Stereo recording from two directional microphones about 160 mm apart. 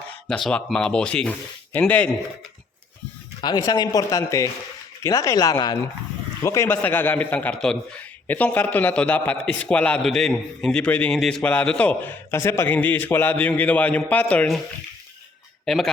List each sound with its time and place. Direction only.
0.3 s speech: centre (ahead or behind)
3.4 s a man's voice: 25° left (ahead or behind); by 14.6 s 5° left (ahead or behind)
15.6 s speech: centre (ahead or behind)